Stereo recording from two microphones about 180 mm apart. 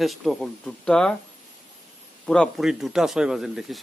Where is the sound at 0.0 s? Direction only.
Centre (ahead or behind).